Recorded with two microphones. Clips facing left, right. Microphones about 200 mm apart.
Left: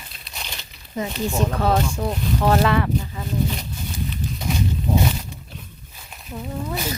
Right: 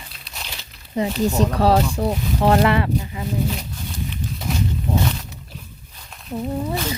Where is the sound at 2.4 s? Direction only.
25° right (ahead or behind).